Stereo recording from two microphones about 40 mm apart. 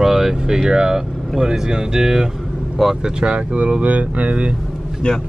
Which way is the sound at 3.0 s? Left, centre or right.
Right.